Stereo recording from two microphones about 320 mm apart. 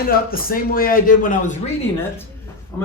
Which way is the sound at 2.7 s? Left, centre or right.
Centre.